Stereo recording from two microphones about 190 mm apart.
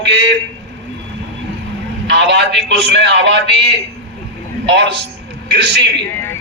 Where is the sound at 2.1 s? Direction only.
65° right (ahead or behind).